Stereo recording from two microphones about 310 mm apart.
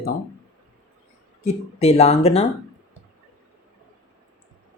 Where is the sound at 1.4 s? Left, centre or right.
Left.